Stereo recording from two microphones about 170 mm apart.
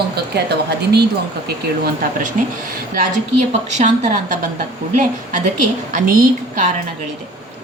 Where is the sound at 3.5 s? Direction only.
45° right (ahead or behind).